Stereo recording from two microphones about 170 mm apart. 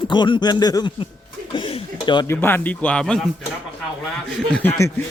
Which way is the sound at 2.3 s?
10° left (ahead or behind).